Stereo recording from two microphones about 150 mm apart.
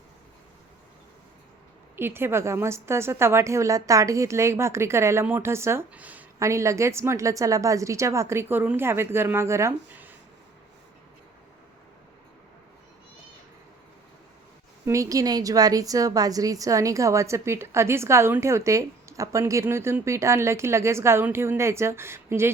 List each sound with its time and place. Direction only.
2.0 s a woman's voice: 15° right (ahead or behind)
14.8 s a woman's voice: 20° right (ahead or behind)